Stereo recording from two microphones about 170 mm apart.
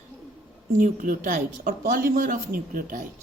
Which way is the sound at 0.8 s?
50° right (ahead or behind).